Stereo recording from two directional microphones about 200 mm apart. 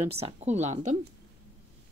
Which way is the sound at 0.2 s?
35° right (ahead or behind).